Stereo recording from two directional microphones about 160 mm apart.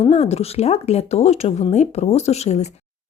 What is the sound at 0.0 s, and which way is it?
Speech, 40° left (ahead or behind).